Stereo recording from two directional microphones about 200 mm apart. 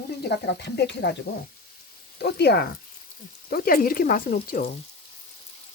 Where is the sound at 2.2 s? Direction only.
55° left (ahead or behind).